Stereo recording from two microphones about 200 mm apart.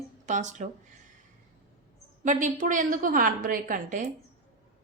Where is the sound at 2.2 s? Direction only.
40° right (ahead or behind).